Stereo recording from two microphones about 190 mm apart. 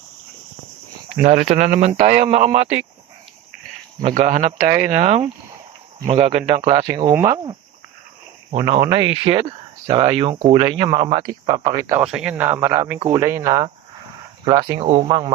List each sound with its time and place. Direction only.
1.2 s speech: 40° right (ahead or behind)
4.0 s speech: 35° right (ahead or behind)
6.7 s speech: 20° right (ahead or behind)
8.9 s speech: 25° right (ahead or behind)
12.0 s speech: 5° right (ahead or behind)
14.8 s speech: 30° right (ahead or behind)